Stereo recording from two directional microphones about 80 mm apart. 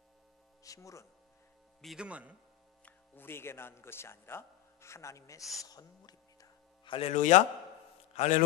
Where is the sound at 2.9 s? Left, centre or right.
Left.